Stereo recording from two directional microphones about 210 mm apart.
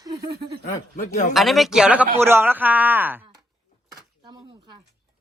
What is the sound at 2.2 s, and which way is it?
Speech, 10° right (ahead or behind).